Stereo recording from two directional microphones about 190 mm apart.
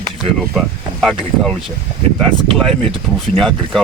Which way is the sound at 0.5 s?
Centre (ahead or behind).